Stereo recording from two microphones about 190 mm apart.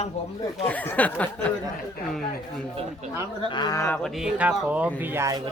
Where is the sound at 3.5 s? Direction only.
20° left (ahead or behind); by 5.4 s 15° right (ahead or behind).